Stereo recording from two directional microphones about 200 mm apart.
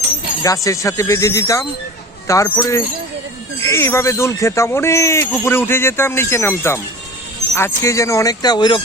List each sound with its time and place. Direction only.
0.4 s speech: 15° left (ahead or behind)